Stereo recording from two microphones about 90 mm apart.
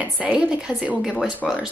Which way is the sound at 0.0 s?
20° right (ahead or behind).